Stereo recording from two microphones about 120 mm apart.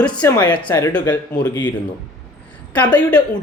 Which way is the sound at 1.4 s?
35° left (ahead or behind).